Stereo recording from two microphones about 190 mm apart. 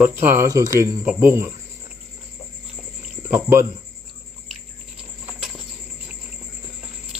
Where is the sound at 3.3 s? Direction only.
10° right (ahead or behind).